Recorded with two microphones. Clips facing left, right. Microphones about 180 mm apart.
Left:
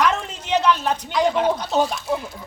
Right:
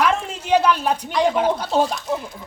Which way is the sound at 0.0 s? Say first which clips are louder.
Right 1 dB; 10° right (ahead or behind).